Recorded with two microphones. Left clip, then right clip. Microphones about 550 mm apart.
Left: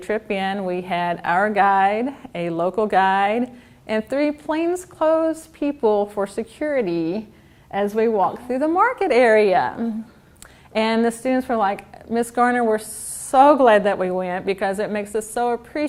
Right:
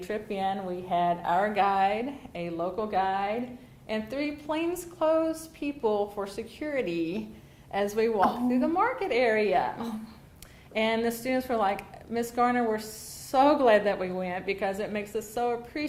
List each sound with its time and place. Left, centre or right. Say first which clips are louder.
0.0 s a woman's voice: left 8 dB; left
10.8 s a woman's voice: left 7 dB; left